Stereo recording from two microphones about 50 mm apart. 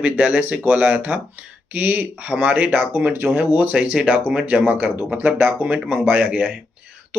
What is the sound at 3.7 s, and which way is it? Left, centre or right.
Speech, right.